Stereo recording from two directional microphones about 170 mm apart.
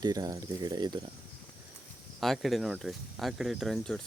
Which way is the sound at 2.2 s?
Centre (ahead or behind).